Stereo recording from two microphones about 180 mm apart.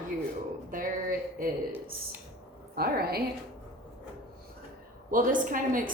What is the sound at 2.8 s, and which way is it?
Speech, 60° right (ahead or behind).